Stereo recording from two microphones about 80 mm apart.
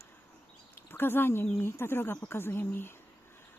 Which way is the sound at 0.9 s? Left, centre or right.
Left.